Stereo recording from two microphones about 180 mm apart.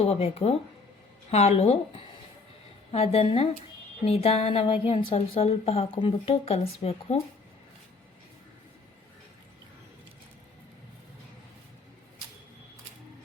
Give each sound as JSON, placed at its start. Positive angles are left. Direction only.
{"t": 0.0, "sound": "a woman's voice", "side_deg": 35}